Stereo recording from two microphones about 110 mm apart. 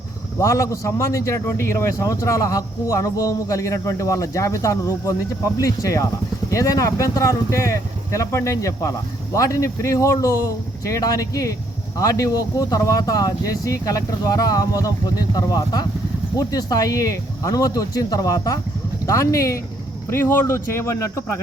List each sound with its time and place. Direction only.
0.3 s speech: 30° left (ahead or behind)